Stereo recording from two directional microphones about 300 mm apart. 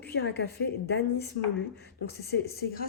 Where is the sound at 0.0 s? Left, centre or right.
Left.